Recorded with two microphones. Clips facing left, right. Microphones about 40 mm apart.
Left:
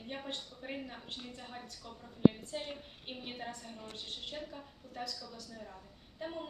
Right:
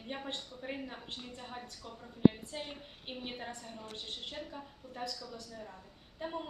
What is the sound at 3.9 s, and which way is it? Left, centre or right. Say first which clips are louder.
Speech: even; right.